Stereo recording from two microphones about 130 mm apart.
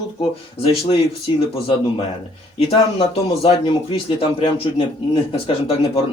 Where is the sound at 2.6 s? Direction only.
50° left (ahead or behind).